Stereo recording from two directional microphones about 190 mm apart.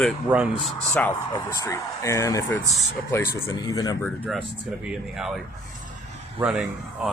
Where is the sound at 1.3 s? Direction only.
15° left (ahead or behind).